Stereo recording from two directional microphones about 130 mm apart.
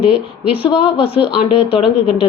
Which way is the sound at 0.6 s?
45° left (ahead or behind).